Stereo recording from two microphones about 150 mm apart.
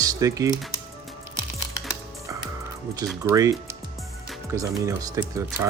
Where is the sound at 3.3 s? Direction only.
20° right (ahead or behind).